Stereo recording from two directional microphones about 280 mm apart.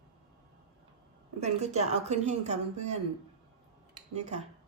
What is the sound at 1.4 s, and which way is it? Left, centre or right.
Speech, right.